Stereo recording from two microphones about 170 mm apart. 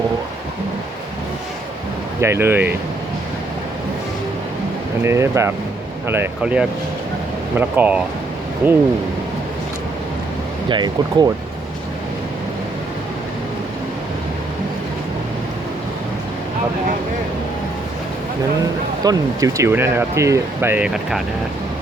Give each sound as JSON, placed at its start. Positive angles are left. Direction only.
{"t": 2.2, "sound": "speech", "side_deg": -15}
{"t": 5.0, "sound": "speech", "side_deg": -15}
{"t": 10.7, "sound": "speech", "side_deg": -25}
{"t": 19.0, "sound": "speech", "side_deg": -20}